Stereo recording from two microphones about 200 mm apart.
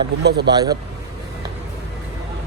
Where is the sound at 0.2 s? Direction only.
55° right (ahead or behind).